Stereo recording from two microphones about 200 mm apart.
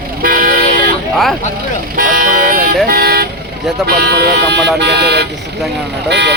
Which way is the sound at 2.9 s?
50° right (ahead or behind).